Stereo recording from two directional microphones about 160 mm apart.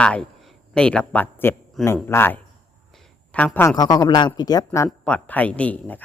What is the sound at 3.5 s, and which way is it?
Speech, 20° left (ahead or behind).